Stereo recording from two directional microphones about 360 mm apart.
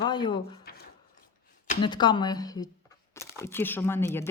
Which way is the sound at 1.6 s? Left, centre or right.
Centre.